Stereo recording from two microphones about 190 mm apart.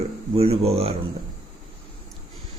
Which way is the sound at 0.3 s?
30° right (ahead or behind).